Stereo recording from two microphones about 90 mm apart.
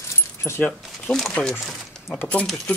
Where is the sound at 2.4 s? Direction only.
5° left (ahead or behind).